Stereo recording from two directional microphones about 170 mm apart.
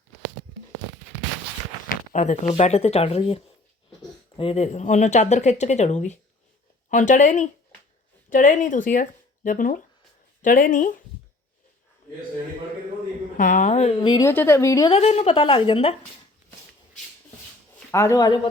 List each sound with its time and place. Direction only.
1.9 s a sound: 45° left (ahead or behind)
2.5 s speech: 40° left (ahead or behind)
13.3 s speech: 50° left (ahead or behind); by 14.3 s 25° left (ahead or behind)
14.3 s a woman's voice: 15° left (ahead or behind)
14.9 s speech: 35° left (ahead or behind)
17.9 s speech: 20° left (ahead or behind)